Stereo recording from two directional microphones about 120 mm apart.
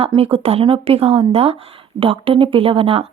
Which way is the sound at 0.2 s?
55° right (ahead or behind).